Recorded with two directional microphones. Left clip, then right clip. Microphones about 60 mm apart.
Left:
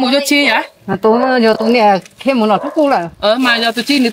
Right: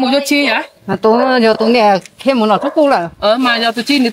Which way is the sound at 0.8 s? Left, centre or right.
Right.